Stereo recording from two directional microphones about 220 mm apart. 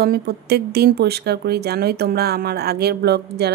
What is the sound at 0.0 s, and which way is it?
Speech, 45° right (ahead or behind).